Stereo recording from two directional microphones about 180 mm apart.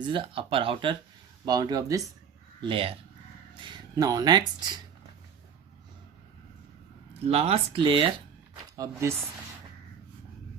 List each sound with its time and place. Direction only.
0.0 s speech: 25° right (ahead or behind)
7.3 s speech: 35° right (ahead or behind)
8.7 s speech: 15° right (ahead or behind)